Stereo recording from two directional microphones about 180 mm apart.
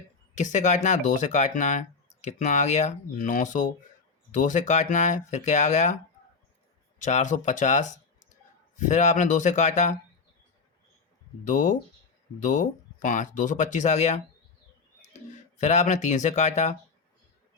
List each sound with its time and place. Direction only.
0.3 s speech: 40° left (ahead or behind)
7.0 s speech: 40° left (ahead or behind)
11.4 s speech: 45° left (ahead or behind)